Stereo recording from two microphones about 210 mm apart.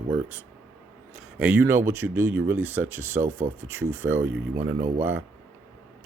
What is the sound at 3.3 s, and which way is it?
Speech, 40° right (ahead or behind).